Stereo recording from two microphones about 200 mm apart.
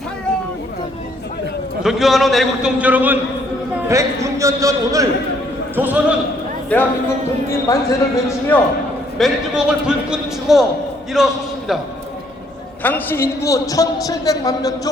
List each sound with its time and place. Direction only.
1.8 s a man's voice: centre (ahead or behind)
6.7 s a man's voice: 5° left (ahead or behind)
9.1 s a man's voice: centre (ahead or behind)
12.8 s a man's voice: 10° left (ahead or behind)